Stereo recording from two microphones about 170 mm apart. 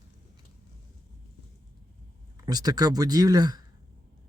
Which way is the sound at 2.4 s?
20° right (ahead or behind).